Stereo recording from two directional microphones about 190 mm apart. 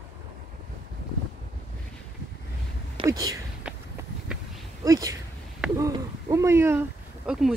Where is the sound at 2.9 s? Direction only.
20° right (ahead or behind).